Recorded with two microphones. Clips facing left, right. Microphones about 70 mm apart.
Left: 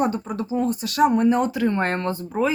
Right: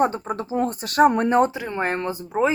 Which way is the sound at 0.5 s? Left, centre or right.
Right.